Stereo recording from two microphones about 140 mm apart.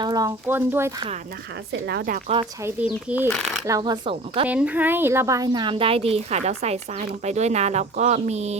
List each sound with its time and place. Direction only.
0.0 s speech: 25° right (ahead or behind)
2.0 s speech: 85° right
2.8 s speech: 10° right (ahead or behind)
3.7 s speech: 30° right (ahead or behind)
4.4 s speech: 10° right (ahead or behind); by 8.5 s 50° right (ahead or behind)